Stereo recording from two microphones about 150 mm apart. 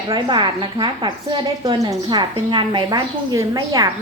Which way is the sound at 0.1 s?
30° right (ahead or behind).